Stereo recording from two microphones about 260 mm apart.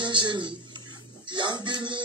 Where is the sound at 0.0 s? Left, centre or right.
Centre.